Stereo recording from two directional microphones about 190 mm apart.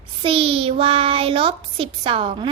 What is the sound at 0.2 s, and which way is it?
Child singing, 30° right (ahead or behind).